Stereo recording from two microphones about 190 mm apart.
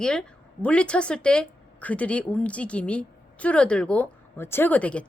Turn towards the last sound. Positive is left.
turn(degrees=5)  # may be behind; listen again after turning